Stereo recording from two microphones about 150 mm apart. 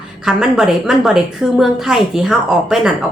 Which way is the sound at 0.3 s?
5° right (ahead or behind).